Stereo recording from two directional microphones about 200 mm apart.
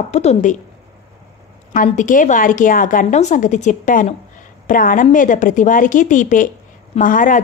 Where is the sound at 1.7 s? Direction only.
40° left (ahead or behind).